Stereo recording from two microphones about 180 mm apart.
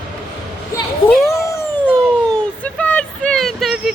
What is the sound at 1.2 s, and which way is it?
Cat, 15° left (ahead or behind).